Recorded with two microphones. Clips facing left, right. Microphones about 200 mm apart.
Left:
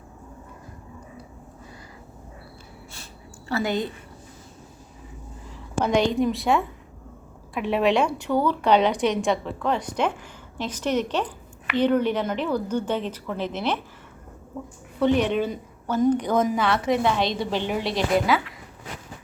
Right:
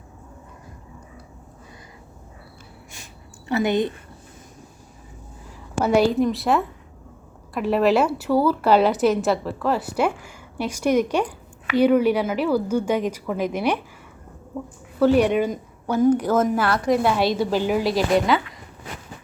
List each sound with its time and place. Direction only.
3.5 s a woman's voice: 20° right (ahead or behind)
5.8 s a woman's voice: 5° right (ahead or behind)
14.9 s a woman's voice: 5° right (ahead or behind)